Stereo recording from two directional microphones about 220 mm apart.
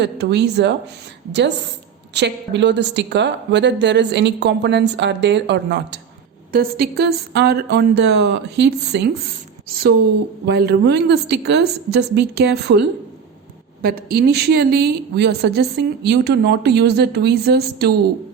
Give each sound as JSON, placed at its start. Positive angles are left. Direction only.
{"t": 0.0, "sound": "a woman's voice", "side_deg": -50}
{"t": 10.4, "sound": "a woman's voice", "side_deg": -45}
{"t": 13.8, "sound": "a woman's voice", "side_deg": -45}